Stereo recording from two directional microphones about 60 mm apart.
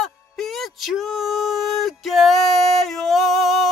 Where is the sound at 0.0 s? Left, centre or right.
Centre.